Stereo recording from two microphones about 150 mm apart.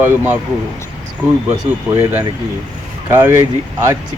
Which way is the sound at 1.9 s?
15° right (ahead or behind).